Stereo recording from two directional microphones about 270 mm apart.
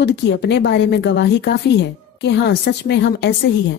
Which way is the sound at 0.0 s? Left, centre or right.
Left.